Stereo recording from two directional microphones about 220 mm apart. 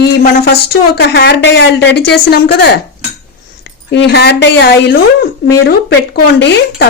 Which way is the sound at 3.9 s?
50° left (ahead or behind).